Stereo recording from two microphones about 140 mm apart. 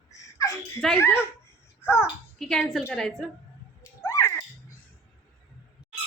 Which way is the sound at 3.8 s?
20° left (ahead or behind).